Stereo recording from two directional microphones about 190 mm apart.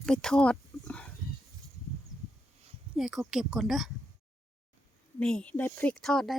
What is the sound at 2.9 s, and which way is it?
A woman's voice, centre (ahead or behind).